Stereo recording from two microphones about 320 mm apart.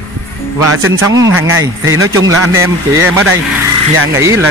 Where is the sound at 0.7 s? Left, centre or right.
Right.